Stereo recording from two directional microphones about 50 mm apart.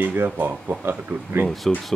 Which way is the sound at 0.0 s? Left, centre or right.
Right.